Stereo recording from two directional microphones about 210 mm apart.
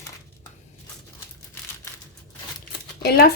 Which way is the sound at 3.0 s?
50° left (ahead or behind).